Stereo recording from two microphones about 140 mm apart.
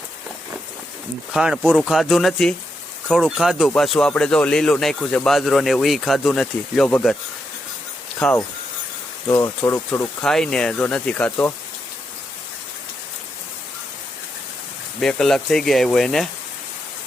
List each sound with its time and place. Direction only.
1.3 s speech: 5° right (ahead or behind)
8.2 s speech: 15° left (ahead or behind)
10.2 s speech: 5° left (ahead or behind)
15.0 s speech: centre (ahead or behind)